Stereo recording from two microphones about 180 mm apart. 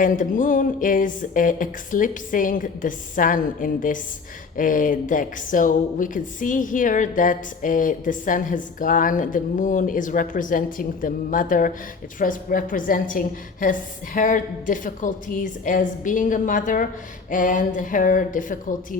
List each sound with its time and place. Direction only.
0.0 s speech: 45° left (ahead or behind)